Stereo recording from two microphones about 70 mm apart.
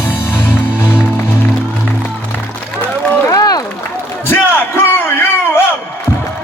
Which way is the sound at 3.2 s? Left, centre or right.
Left.